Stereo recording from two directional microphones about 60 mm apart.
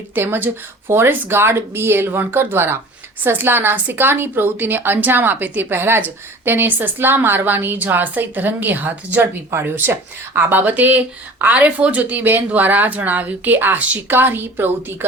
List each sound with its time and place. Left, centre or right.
0.1 s a woman's voice: right
14.1 s a woman's voice: right